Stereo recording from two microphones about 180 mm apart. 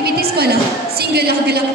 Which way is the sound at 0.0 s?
60° right (ahead or behind).